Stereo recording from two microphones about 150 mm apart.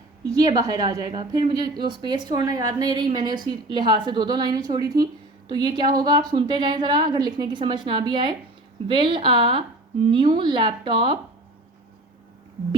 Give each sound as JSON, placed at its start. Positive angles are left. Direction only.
{"t": 0.3, "sound": "a woman's voice", "side_deg": -25}